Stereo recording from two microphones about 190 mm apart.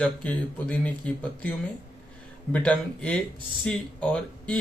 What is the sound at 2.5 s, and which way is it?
Speech, 5° left (ahead or behind).